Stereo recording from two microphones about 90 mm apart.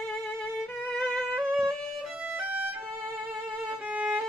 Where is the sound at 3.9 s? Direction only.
10° right (ahead or behind).